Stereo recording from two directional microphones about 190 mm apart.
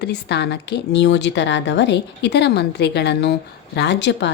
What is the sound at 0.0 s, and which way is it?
A woman's voice, 65° left (ahead or behind).